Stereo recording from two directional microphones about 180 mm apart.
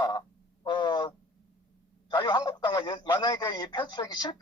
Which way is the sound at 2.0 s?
25° left (ahead or behind).